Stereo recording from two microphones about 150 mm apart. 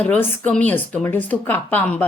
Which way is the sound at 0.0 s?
10° left (ahead or behind).